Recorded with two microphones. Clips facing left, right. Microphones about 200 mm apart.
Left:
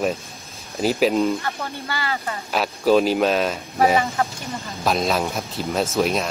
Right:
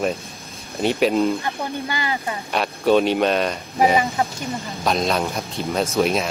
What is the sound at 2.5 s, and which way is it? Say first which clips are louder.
Speech: even; centre (ahead or behind).